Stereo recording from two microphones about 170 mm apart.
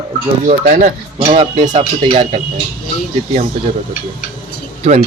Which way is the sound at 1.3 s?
30° right (ahead or behind).